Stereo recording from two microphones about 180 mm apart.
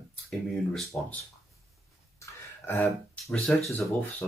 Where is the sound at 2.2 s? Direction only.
15° left (ahead or behind).